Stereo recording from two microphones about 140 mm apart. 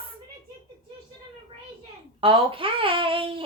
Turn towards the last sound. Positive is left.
turn(degrees=-40)  # may be behind; listen again after turning